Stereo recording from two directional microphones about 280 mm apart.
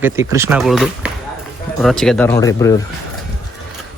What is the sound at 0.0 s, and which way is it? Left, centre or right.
Speech, centre.